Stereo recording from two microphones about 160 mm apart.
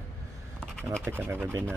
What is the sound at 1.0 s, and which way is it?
Speech, 15° right (ahead or behind).